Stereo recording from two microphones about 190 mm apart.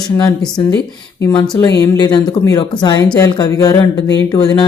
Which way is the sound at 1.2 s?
20° left (ahead or behind).